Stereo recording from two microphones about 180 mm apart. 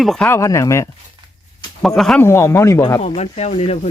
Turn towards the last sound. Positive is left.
turn(degrees=35)  # may be behind; listen again after turning